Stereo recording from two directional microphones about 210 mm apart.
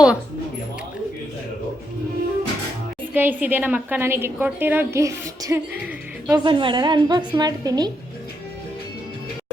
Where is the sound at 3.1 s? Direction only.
10° right (ahead or behind).